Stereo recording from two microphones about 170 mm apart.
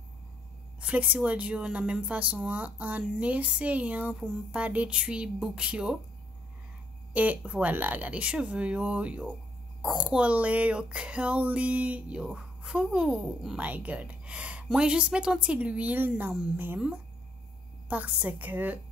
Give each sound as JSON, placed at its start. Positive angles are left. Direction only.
{"t": 0.7, "sound": "speech", "side_deg": -10}
{"t": 7.2, "sound": "speech", "side_deg": -10}